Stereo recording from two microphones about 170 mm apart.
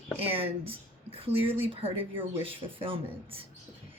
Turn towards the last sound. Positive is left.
turn(degrees=-35)  # may be behind; listen again after turning